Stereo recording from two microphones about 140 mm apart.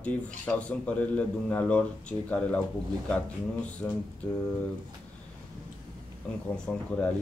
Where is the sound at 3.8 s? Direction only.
20° left (ahead or behind).